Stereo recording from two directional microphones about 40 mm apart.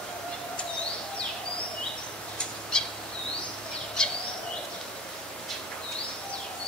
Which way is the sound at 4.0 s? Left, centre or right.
Centre.